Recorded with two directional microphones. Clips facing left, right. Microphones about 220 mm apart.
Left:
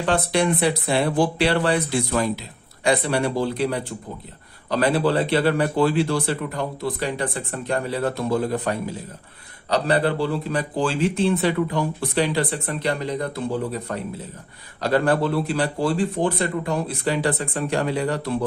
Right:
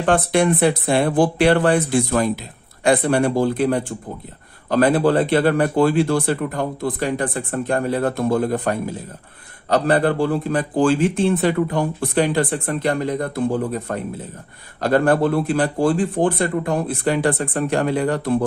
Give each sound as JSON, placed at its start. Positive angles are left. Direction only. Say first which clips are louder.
{"t": 0.0, "sound": "speech", "louder": "right 4 dB", "side_deg": -50}